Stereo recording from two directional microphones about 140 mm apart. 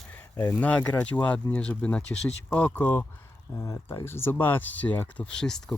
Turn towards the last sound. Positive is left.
turn(degrees=5)  # may be behind; listen again after turning